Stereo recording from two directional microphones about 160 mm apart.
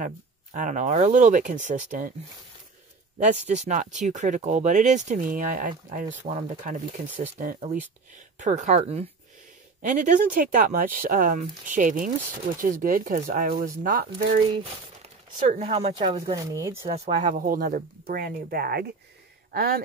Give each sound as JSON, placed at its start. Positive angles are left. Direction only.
{"t": 0.0, "sound": "speech", "side_deg": -50}
{"t": 3.2, "sound": "speech", "side_deg": -45}
{"t": 6.2, "sound": "speech", "side_deg": -35}
{"t": 9.8, "sound": "speech", "side_deg": -55}
{"t": 14.6, "sound": "speech", "side_deg": -45}
{"t": 16.8, "sound": "speech", "side_deg": -45}